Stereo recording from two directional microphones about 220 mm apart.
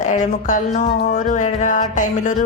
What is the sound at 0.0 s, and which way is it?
Music, 35° left (ahead or behind).